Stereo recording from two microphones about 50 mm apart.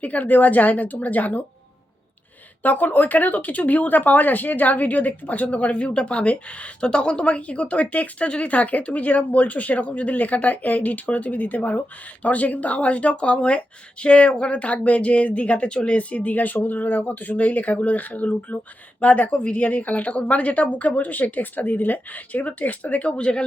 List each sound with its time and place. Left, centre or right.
0.0 s speech: left
2.6 s speech: left